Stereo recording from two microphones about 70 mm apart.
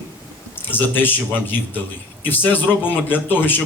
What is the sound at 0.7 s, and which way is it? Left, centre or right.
Speech, left.